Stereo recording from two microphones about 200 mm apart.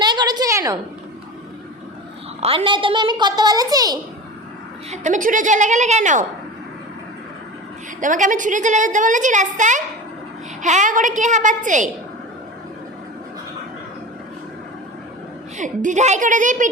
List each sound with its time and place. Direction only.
0.0 s a sound: 20° right (ahead or behind)
2.4 s a child's voice: 30° right (ahead or behind)
4.9 s a woman's voice: 40° right (ahead or behind)
8.0 s a woman's voice: 40° right (ahead or behind)
15.5 s a woman's voice: 40° right (ahead or behind)